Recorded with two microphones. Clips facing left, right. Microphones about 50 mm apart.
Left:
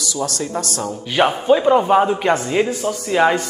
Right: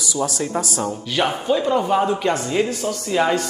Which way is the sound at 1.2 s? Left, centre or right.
Left.